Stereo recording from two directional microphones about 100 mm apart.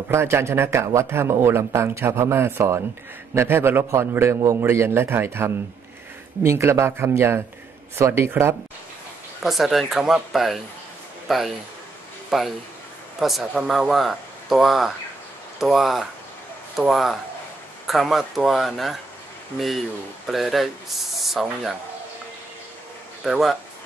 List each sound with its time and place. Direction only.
0.1 s speech: 25° right (ahead or behind)
9.4 s a man's voice: centre (ahead or behind)
20.2 s speech: centre (ahead or behind)
23.2 s speech: 5° right (ahead or behind)